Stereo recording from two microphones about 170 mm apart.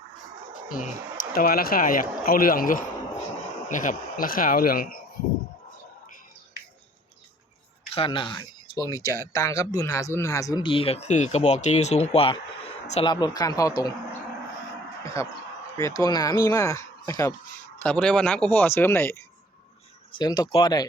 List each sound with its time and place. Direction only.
1.3 s speech: 60° left (ahead or behind)
7.9 s speech: 30° left (ahead or behind)
15.0 s a sound: 15° left (ahead or behind)
15.8 s speech: 20° left (ahead or behind)
17.8 s speech: 5° left (ahead or behind)
20.1 s speech: 25° left (ahead or behind)